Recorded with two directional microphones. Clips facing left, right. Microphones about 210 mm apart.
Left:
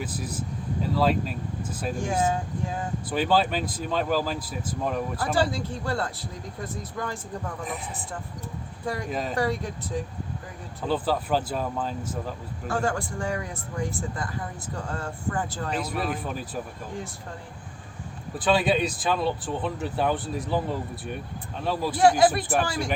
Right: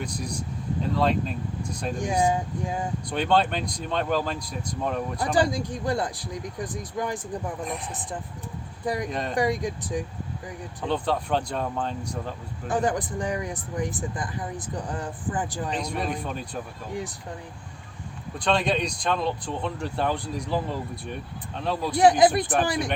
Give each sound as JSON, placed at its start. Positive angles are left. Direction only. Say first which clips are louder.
{"t": 0.0, "sound": "speech", "louder": "even", "side_deg": 5}
{"t": 2.0, "sound": "speech", "louder": "right 2 dB", "side_deg": -15}
{"t": 3.1, "sound": "speech", "louder": "even", "side_deg": 5}
{"t": 5.3, "sound": "speech", "louder": "right 2 dB", "side_deg": -15}
{"t": 9.0, "sound": "speech", "louder": "even", "side_deg": 5}
{"t": 9.3, "sound": "speech", "louder": "right 4 dB", "side_deg": -15}
{"t": 10.8, "sound": "speech", "louder": "left 1 dB", "side_deg": 5}
{"t": 12.6, "sound": "speech", "louder": "right 2 dB", "side_deg": -15}
{"t": 15.7, "sound": "speech", "louder": "left 2 dB", "side_deg": 5}
{"t": 18.3, "sound": "speech", "louder": "left 2 dB", "side_deg": 5}
{"t": 21.9, "sound": "speech", "louder": "right 2 dB", "side_deg": -20}